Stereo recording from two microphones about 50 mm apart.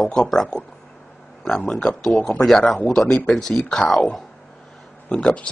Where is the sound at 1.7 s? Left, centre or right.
Centre.